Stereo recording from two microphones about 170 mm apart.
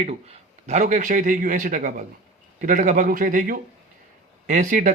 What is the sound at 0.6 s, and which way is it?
A man's voice, 45° right (ahead or behind).